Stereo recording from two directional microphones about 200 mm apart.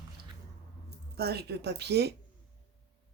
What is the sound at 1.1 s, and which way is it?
Speech, 55° right (ahead or behind).